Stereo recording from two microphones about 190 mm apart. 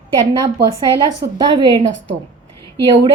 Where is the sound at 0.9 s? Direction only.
20° right (ahead or behind).